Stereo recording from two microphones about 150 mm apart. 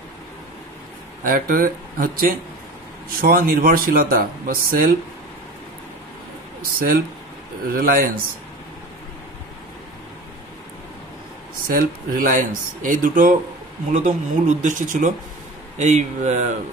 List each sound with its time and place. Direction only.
1.2 s speech: 70° right (ahead or behind)
6.6 s speech: 75° right (ahead or behind)
11.6 s speech: 70° right (ahead or behind); by 16.5 s 50° right (ahead or behind)